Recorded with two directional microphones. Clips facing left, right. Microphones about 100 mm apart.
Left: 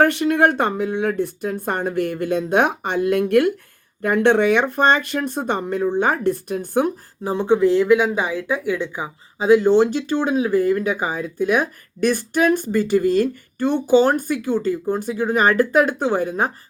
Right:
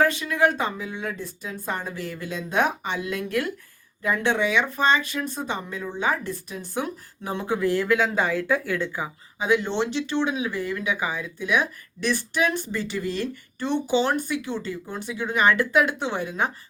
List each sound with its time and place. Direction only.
0.0 s speech: 65° left (ahead or behind)
7.3 s speech: 25° left (ahead or behind)
9.4 s speech: 35° left (ahead or behind)